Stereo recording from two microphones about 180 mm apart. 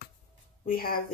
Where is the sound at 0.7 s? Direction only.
55° left (ahead or behind).